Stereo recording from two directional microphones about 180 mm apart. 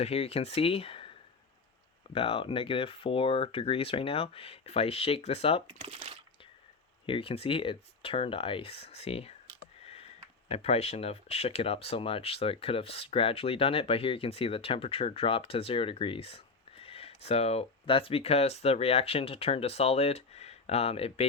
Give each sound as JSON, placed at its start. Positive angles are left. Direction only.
{"t": 0.0, "sound": "speech", "side_deg": 35}
{"t": 2.1, "sound": "speech", "side_deg": 30}
{"t": 5.6, "sound": "speech", "side_deg": -30}
{"t": 7.0, "sound": "speech", "side_deg": 30}
{"t": 9.8, "sound": "a sound", "side_deg": 35}
{"t": 10.5, "sound": "speech", "side_deg": 35}